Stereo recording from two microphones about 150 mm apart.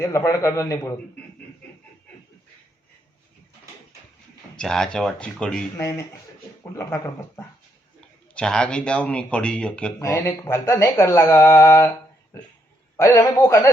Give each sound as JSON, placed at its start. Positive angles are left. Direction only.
{"t": 0.0, "sound": "speech", "side_deg": 20}
{"t": 4.5, "sound": "speech", "side_deg": 5}
{"t": 5.7, "sound": "a man's voice", "side_deg": 20}
{"t": 8.3, "sound": "a man's voice", "side_deg": 5}
{"t": 10.0, "sound": "speech", "side_deg": 20}
{"t": 13.0, "sound": "speech", "side_deg": 20}